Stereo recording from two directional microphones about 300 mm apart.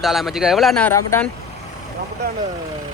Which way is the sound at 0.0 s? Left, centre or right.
Centre.